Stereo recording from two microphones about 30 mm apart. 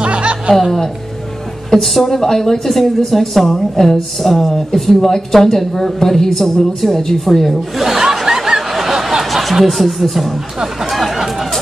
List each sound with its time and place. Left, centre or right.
0.0 s music: right
1.7 s speech: centre
7.8 s snicker: centre
9.2 s speech: centre
10.9 s a sound: centre